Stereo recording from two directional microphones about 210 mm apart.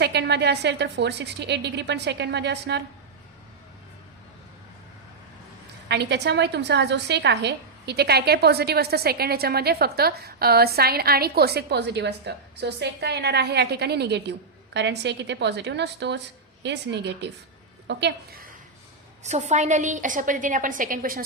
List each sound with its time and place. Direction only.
0.0 s a woman's voice: 50° right (ahead or behind)
5.9 s a woman's voice: 55° right (ahead or behind)
19.2 s a woman's voice: 35° right (ahead or behind)